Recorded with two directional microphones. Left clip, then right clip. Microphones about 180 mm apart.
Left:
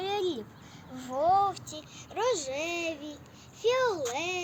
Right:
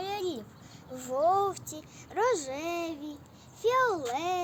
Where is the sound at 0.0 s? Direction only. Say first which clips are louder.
Left 3 dB; 60° right (ahead or behind); by 3.2 s 25° right (ahead or behind).